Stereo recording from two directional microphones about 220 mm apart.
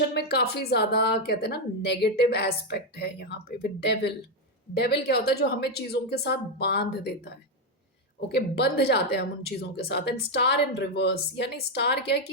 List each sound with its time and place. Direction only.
0.1 s a woman's voice: 45° left (ahead or behind)